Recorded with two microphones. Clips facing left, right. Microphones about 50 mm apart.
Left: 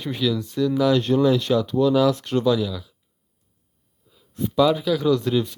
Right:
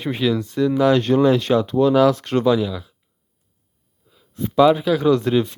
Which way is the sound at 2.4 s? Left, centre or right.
Right.